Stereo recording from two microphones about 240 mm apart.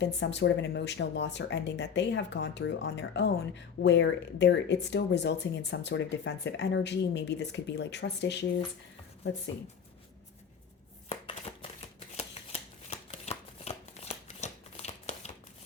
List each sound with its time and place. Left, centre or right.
0.0 s speech: left
11.1 s shuffling cards: left